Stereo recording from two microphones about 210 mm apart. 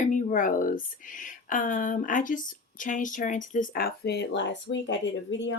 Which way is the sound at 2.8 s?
40° left (ahead or behind).